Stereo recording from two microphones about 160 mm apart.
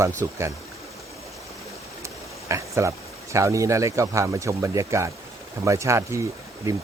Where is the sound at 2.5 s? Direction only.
20° right (ahead or behind).